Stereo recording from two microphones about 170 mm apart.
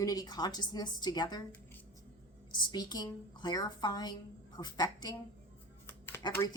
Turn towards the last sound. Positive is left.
turn(degrees=15)  # may be behind; listen again after turning